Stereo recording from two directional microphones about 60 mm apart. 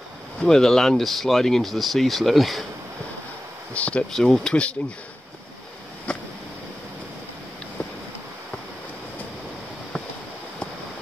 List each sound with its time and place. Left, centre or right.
0.4 s speech: centre
3.7 s speech: left
4.1 s speech: centre